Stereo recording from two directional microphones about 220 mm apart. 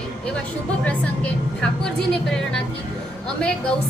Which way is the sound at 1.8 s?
5° left (ahead or behind).